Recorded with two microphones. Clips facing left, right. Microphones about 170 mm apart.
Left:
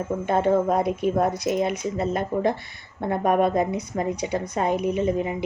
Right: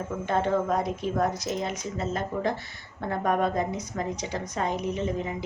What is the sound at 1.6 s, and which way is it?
Speech, 60° left (ahead or behind).